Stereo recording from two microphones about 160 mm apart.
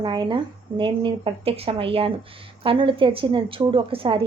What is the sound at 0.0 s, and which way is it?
A woman's voice, 30° right (ahead or behind).